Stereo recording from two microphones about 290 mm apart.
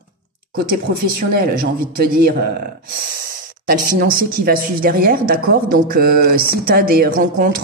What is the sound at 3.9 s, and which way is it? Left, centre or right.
A woman's voice, right.